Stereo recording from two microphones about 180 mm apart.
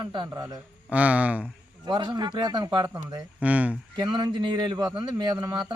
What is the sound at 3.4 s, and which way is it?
Speech, 10° right (ahead or behind).